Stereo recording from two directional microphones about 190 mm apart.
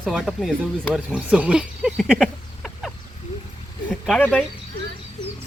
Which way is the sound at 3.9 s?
5° left (ahead or behind).